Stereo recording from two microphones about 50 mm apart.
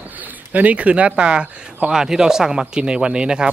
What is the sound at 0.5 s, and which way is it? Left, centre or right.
Speech, right.